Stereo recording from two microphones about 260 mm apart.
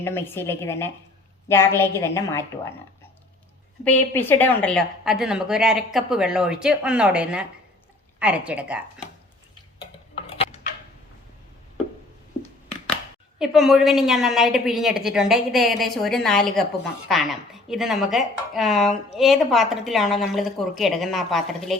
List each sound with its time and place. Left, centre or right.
0.0 s a woman's voice: centre
3.8 s speech: centre
9.7 s tick-tock: left
13.4 s speech: centre